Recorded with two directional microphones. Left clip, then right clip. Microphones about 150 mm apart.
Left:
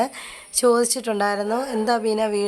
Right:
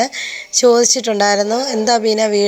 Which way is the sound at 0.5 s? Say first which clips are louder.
Right 7 dB; 15° right (ahead or behind).